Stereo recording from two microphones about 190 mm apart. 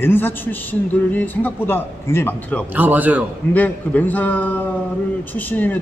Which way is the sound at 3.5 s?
10° left (ahead or behind).